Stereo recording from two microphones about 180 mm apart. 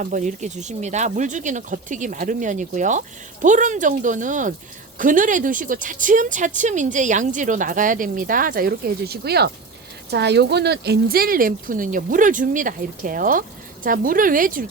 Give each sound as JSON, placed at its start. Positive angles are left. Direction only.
{"t": 0.0, "sound": "speech", "side_deg": -45}